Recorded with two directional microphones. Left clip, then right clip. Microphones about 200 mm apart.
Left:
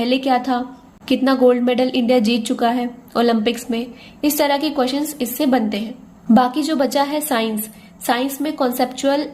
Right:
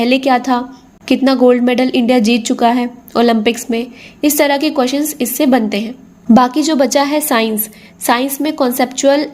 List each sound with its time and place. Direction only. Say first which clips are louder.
0.0 s a woman's voice: right 5 dB; 35° right (ahead or behind)